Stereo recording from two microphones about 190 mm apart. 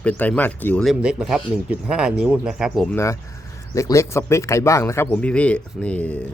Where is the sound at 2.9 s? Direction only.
15° left (ahead or behind).